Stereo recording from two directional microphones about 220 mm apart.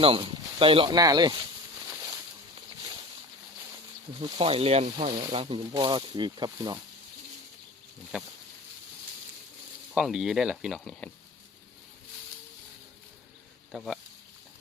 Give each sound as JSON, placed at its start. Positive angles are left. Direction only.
{"t": 0.0, "sound": "speech", "side_deg": -25}
{"t": 4.2, "sound": "speech", "side_deg": -25}
{"t": 9.9, "sound": "speech", "side_deg": 0}
{"t": 13.7, "sound": "speech", "side_deg": 0}